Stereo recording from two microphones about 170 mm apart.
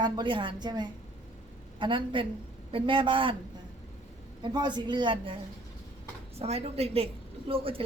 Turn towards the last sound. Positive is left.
turn(degrees=-30)  # may be behind; listen again after turning